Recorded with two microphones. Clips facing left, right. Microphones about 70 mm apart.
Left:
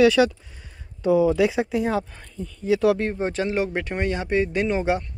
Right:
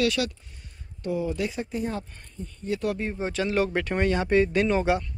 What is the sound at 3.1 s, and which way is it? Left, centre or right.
Speech, left.